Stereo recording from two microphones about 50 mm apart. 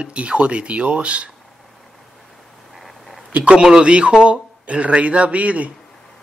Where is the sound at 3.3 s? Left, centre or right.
Right.